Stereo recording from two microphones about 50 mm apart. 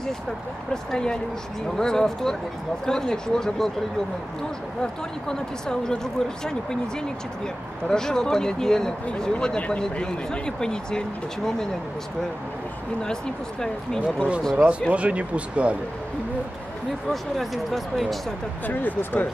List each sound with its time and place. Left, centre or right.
0.9 s speech: centre
5.3 s speech: centre
13.0 s speech: centre
14.9 s speech: right
17.1 s speech: centre
18.7 s speech: left